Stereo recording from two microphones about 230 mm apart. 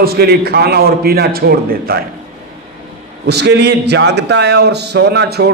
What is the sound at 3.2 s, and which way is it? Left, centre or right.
A man's voice, right.